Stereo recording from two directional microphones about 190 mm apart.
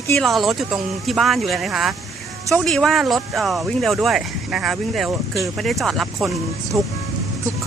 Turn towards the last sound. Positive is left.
turn(degrees=0)  # may be behind; listen again after turning